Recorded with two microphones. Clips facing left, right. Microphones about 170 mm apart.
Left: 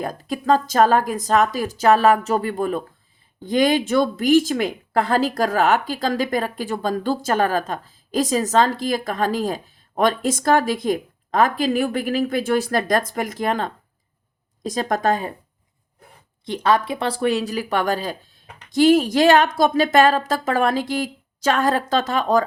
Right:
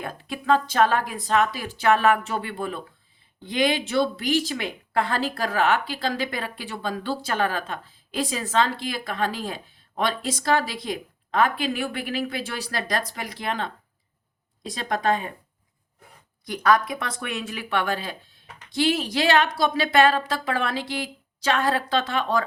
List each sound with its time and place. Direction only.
0.0 s a woman's voice: 40° left (ahead or behind)
16.5 s a woman's voice: 25° left (ahead or behind)